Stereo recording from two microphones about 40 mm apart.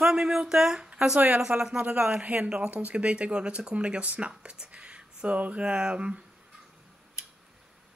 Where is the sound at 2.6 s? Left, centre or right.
Right.